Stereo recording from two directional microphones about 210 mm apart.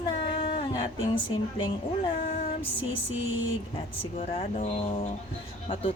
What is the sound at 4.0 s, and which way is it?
Speech, 30° left (ahead or behind).